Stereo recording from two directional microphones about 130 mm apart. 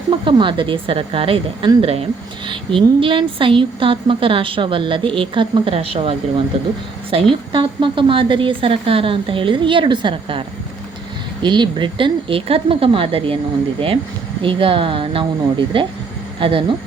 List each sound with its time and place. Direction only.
0.1 s a woman's voice: 40° right (ahead or behind)
11.4 s speech: 35° right (ahead or behind)